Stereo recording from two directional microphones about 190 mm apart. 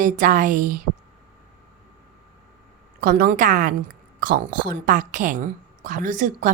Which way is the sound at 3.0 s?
50° right (ahead or behind).